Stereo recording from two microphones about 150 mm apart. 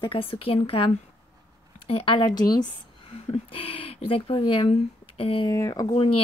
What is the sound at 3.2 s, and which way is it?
A woman's voice, 40° left (ahead or behind).